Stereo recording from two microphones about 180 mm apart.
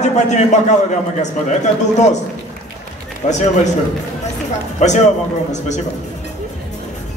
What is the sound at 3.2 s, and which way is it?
Speech, 40° left (ahead or behind).